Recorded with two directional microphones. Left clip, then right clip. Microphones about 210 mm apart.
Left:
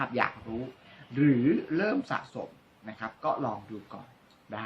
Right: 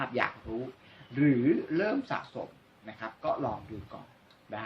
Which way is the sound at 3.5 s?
Centre (ahead or behind).